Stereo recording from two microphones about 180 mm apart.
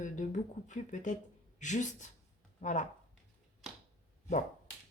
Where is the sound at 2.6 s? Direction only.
40° left (ahead or behind).